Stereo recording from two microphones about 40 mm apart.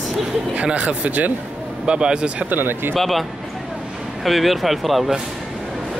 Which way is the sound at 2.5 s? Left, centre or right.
Right.